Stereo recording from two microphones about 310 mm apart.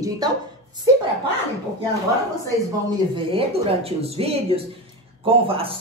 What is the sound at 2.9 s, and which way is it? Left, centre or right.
A woman's voice, centre.